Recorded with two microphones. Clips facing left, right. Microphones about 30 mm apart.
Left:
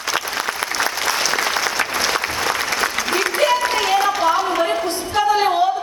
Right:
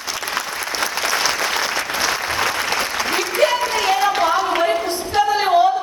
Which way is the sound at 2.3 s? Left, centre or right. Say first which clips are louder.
Right 1 dB; right.